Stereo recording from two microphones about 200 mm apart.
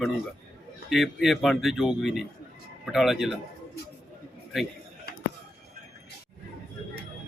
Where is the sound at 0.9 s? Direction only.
Centre (ahead or behind).